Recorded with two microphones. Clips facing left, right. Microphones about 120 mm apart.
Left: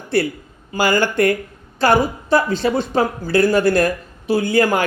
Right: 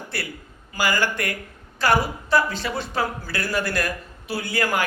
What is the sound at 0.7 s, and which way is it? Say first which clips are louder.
A woman's voice: left 6 dB; 25° left (ahead or behind).